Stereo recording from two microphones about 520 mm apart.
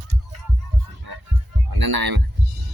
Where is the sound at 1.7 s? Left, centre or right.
Right.